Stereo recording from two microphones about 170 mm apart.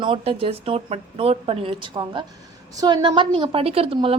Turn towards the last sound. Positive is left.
turn(degrees=-30)  # may be behind; listen again after turning